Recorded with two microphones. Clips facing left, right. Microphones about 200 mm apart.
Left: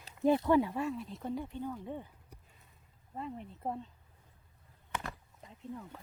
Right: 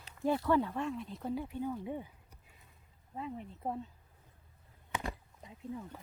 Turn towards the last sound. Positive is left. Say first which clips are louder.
# right 2 dB
turn(degrees=-5)  # may be behind; listen again after turning